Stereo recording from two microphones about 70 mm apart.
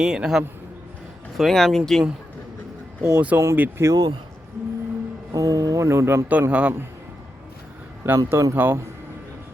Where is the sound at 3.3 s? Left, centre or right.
Right.